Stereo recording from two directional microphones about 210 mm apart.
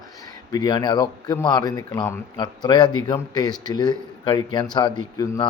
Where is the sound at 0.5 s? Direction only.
20° left (ahead or behind).